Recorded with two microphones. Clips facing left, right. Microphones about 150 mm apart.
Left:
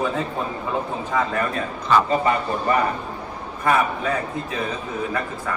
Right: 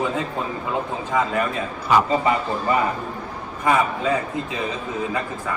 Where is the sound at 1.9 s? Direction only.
15° right (ahead or behind).